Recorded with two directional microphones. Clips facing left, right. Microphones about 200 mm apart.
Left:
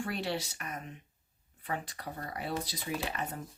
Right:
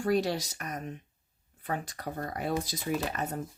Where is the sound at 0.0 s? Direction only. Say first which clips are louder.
Right 7 dB; 40° right (ahead or behind).